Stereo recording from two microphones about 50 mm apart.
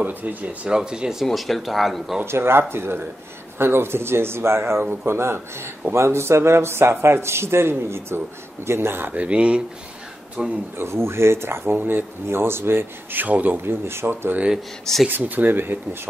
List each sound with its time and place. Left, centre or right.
0.0 s speech: right
0.7 s speech: centre
1.2 s speech: centre
2.2 s speech: right
9.1 s speech: right
10.8 s speech: right
13.2 s speech: right
13.7 s speech: right
15.0 s speech: right